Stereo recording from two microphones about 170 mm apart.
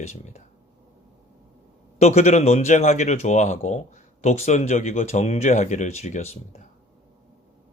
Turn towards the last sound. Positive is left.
turn(degrees=40)  # may be behind; listen again after turning